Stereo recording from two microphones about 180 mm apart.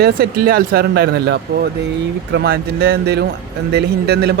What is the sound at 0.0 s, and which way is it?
Speech, 60° right (ahead or behind).